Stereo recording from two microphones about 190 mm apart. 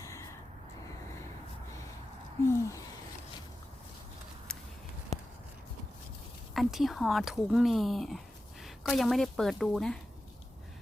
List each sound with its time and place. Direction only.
0.0 s gasp: 15° left (ahead or behind)
2.5 s a sound: 15° left (ahead or behind)
6.5 s speech: centre (ahead or behind)